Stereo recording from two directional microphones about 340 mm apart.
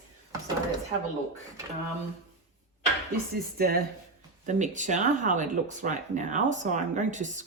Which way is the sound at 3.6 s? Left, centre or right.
Right.